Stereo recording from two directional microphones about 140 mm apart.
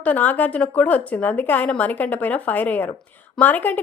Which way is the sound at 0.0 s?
10° left (ahead or behind).